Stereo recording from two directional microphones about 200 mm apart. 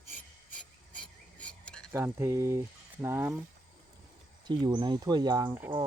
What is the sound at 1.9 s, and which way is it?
Speech, 15° right (ahead or behind).